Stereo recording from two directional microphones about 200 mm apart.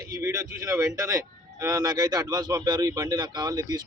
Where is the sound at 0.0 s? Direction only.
15° right (ahead or behind).